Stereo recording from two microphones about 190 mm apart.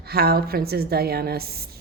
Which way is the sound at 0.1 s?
55° right (ahead or behind).